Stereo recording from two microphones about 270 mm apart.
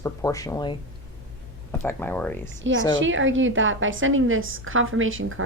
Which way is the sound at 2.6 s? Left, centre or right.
Right.